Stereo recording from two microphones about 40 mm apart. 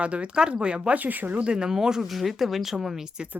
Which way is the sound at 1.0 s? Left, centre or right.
Right.